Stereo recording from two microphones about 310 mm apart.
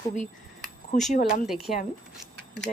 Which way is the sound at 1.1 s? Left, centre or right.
Left.